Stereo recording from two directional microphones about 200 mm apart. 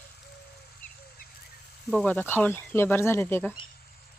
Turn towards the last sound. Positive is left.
turn(degrees=10)  # may be behind; listen again after turning